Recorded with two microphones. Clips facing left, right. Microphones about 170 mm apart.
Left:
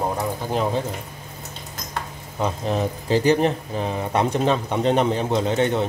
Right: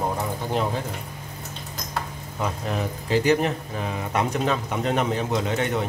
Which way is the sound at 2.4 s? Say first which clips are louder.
Left 4 dB; 30° left (ahead or behind).